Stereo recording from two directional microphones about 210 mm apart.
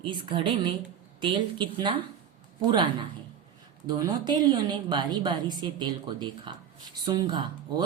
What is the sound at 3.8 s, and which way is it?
A woman's voice, 20° right (ahead or behind).